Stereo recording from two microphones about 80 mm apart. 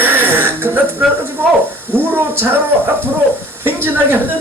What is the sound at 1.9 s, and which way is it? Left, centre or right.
A man's voice, right.